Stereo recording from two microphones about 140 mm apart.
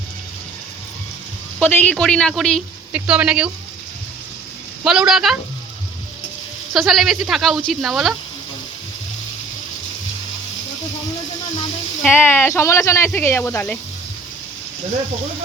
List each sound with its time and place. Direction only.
1.6 s speech: 10° left (ahead or behind); by 3.5 s 5° right (ahead or behind)
4.8 s speech: 5° right (ahead or behind)
6.7 s speech: centre (ahead or behind)
12.0 s speech: 15° left (ahead or behind)